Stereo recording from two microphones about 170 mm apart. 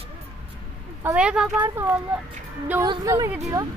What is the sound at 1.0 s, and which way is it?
Speech, 5° right (ahead or behind).